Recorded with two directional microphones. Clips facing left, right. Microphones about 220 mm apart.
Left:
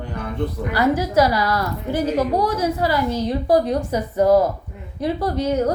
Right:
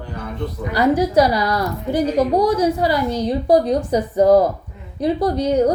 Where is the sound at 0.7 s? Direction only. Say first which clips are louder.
Right 3 dB; 15° right (ahead or behind).